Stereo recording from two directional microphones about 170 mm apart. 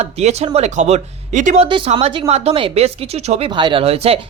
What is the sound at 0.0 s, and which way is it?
Speech, 40° right (ahead or behind).